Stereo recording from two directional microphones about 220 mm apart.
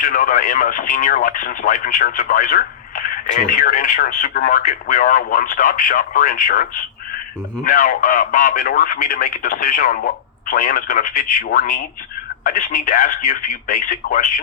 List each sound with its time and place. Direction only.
0.0 s speech: 40° left (ahead or behind)